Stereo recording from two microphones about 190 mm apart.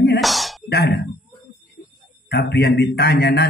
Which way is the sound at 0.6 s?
55° left (ahead or behind).